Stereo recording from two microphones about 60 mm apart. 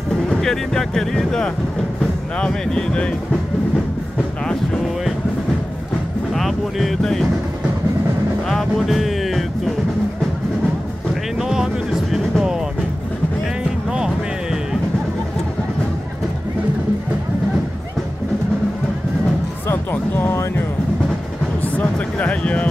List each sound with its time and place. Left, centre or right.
0.3 s speech: centre
6.3 s speech: centre
8.5 s music: centre
11.3 s music: centre
13.8 s music: centre
19.7 s music: left
21.7 s speech: left